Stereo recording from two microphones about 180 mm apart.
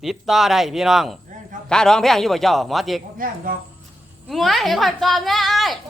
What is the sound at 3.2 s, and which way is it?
Speech, 50° right (ahead or behind).